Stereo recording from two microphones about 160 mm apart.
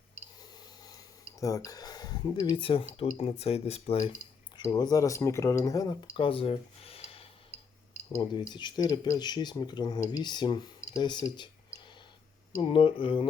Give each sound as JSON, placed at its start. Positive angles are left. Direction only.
{"t": 1.4, "sound": "speech", "side_deg": 20}
{"t": 4.5, "sound": "speech", "side_deg": 25}
{"t": 12.6, "sound": "speech", "side_deg": 35}